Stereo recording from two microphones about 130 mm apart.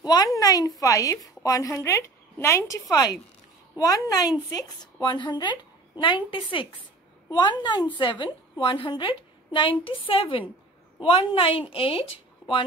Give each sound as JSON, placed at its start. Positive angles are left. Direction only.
{"t": 0.0, "sound": "a woman's voice", "side_deg": 30}